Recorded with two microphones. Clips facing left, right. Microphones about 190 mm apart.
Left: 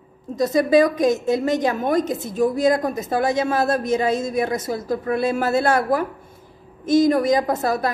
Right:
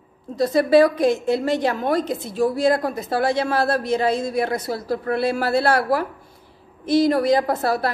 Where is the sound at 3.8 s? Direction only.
45° left (ahead or behind).